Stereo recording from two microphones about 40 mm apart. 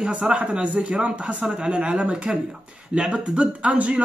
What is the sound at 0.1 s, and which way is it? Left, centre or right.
A man's voice, right.